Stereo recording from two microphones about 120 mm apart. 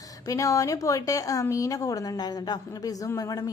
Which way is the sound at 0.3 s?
30° left (ahead or behind).